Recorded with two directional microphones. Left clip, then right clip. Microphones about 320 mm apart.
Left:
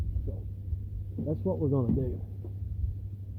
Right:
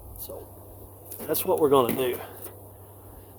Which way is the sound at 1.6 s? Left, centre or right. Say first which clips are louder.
Right 14 dB; right.